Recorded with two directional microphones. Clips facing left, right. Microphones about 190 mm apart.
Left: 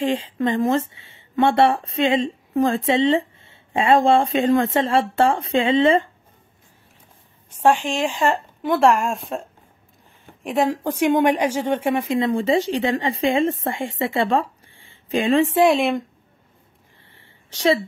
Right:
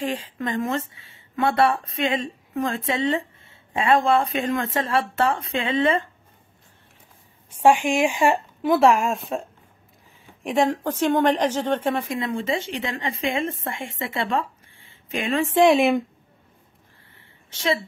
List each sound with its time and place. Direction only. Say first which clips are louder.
0.0 s speech: left 6 dB; 25° left (ahead or behind)
7.5 s a woman's voice: right 1 dB; 10° right (ahead or behind); by 12.2 s 15° left (ahead or behind)
12.2 s a woman's voice: left 7 dB; 35° left (ahead or behind)
15.5 s speech: even; centre (ahead or behind)